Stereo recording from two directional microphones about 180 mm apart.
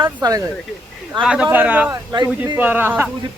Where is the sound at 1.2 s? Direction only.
5° right (ahead or behind).